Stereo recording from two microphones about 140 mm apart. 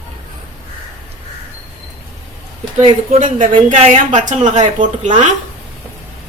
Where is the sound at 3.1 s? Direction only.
70° right (ahead or behind).